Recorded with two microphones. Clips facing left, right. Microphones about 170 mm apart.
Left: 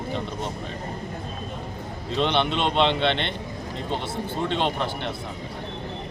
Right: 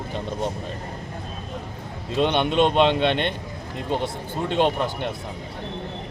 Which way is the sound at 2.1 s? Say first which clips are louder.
Right 4 dB; 10° right (ahead or behind).